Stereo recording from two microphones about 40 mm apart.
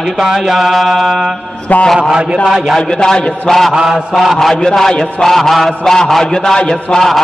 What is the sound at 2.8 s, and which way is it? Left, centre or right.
Speech, centre.